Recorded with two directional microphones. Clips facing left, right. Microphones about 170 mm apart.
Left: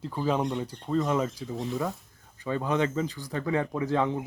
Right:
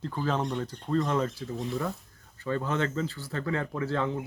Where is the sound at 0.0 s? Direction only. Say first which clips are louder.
Left 2 dB; 10° left (ahead or behind).